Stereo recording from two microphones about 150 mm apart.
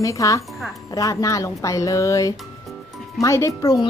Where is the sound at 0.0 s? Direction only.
20° left (ahead or behind).